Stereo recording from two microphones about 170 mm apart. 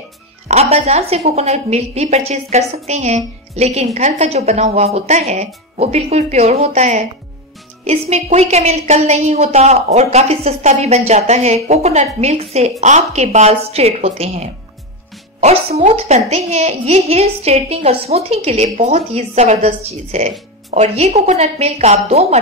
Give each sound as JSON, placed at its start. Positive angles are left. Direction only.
{"t": 0.5, "sound": "a woman's voice", "side_deg": -40}